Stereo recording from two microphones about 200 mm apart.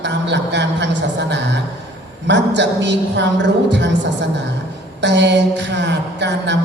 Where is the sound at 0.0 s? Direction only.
60° right (ahead or behind).